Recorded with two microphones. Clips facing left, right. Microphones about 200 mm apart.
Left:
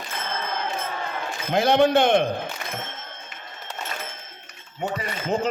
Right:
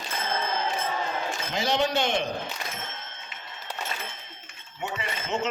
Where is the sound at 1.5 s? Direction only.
55° left (ahead or behind).